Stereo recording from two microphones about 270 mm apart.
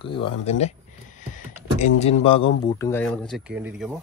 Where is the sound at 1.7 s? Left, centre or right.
Left; by 4.0 s centre.